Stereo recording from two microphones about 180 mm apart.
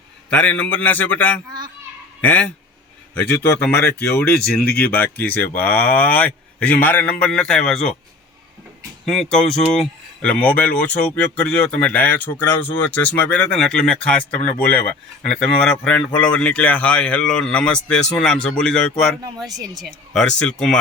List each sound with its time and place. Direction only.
0.3 s speech: 10° left (ahead or behind)
1.5 s a child's voice: 25° right (ahead or behind)
2.2 s speech: 10° left (ahead or behind)
4.1 s speech: 10° left (ahead or behind)
9.0 s speech: centre (ahead or behind)
19.5 s speech: 20° right (ahead or behind)
19.8 s speech: 5° left (ahead or behind)